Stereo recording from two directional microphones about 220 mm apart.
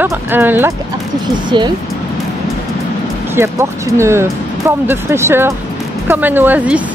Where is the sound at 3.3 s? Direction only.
10° right (ahead or behind).